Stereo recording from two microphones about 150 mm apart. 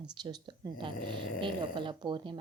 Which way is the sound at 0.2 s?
30° right (ahead or behind).